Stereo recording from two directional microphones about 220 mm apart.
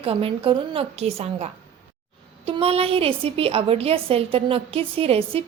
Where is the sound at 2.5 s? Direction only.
25° right (ahead or behind).